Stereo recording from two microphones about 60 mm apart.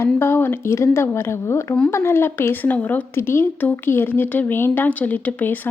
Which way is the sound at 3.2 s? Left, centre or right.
Left.